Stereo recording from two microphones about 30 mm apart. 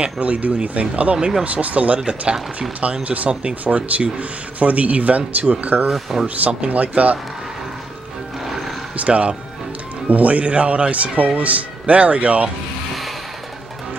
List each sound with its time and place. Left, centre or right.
0.0 s speech: right
5.9 s speech: centre
6.7 s speech: right
8.5 s music: centre
8.9 s speech: right
10.0 s speech: right
11.8 s speech: right